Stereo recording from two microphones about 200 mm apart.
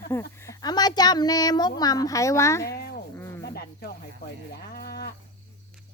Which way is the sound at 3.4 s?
50° left (ahead or behind).